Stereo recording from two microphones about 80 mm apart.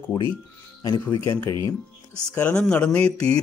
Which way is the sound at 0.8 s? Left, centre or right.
Left.